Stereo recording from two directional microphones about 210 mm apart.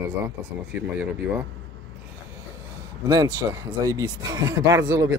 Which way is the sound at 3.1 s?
15° right (ahead or behind).